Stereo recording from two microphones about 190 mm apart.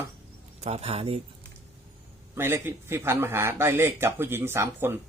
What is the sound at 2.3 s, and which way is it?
Speech, 10° right (ahead or behind).